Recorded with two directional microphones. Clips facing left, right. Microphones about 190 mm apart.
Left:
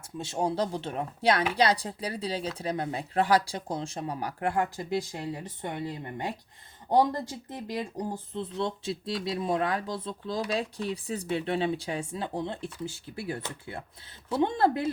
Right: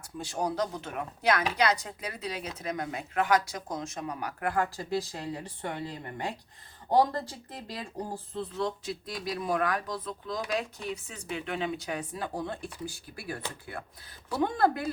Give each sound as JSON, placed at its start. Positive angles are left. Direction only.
{"t": 0.2, "sound": "speech", "side_deg": 25}